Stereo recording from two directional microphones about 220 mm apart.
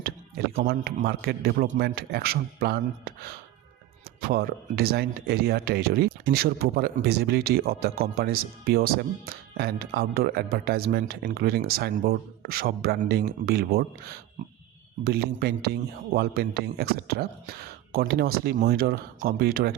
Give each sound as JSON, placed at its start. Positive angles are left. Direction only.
{"t": 0.5, "sound": "speech", "side_deg": -40}
{"t": 4.3, "sound": "speech", "side_deg": -45}
{"t": 15.0, "sound": "speech", "side_deg": -45}